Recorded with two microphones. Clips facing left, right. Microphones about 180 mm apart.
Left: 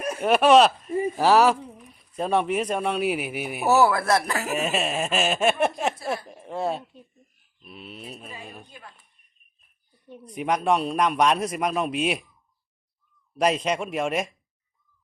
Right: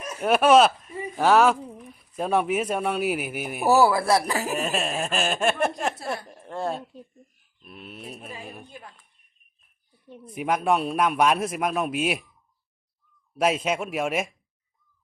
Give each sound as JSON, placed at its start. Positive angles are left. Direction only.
{"t": 0.2, "sound": "a man's voice", "side_deg": 0}
{"t": 0.9, "sound": "a sound", "side_deg": 45}
{"t": 1.1, "sound": "a man's voice", "side_deg": 0}
{"t": 3.7, "sound": "speech", "side_deg": -10}
{"t": 4.5, "sound": "speech", "side_deg": 0}
{"t": 6.2, "sound": "a sound", "side_deg": 0}
{"t": 9.9, "sound": "a man's voice", "side_deg": -5}
{"t": 13.3, "sound": "a man's voice", "side_deg": -5}